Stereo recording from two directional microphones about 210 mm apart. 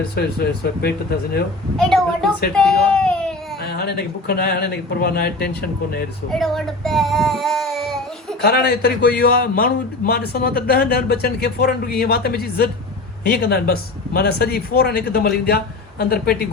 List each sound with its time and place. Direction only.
0.2 s a man's voice: 50° left (ahead or behind)
1.7 s a child's voice: centre (ahead or behind)
3.6 s a man's voice: 50° left (ahead or behind)
6.3 s child singing: centre (ahead or behind)
8.4 s a man's voice: 50° left (ahead or behind)